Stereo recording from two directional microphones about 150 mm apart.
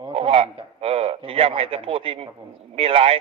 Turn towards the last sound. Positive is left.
turn(degrees=-40)  # may be behind; listen again after turning